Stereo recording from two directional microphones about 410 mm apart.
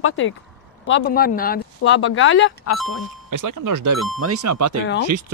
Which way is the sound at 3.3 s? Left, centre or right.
Right.